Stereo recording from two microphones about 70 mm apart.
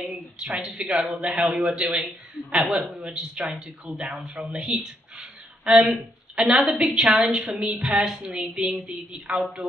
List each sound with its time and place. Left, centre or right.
0.0 s a man's voice: centre